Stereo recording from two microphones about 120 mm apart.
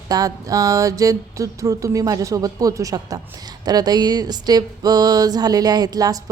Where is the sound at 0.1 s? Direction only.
30° right (ahead or behind).